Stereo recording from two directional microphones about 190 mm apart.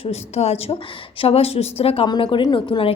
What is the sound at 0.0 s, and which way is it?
A woman's voice, 35° left (ahead or behind).